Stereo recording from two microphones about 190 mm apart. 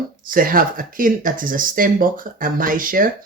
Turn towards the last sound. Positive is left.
turn(degrees=-45)  # may be behind; listen again after turning